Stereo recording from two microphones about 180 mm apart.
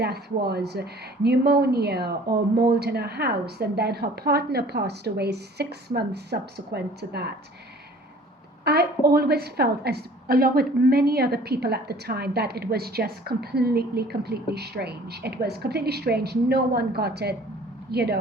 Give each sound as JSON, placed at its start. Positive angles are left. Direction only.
{"t": 0.0, "sound": "a woman's voice", "side_deg": -60}
{"t": 8.6, "sound": "a woman's voice", "side_deg": -60}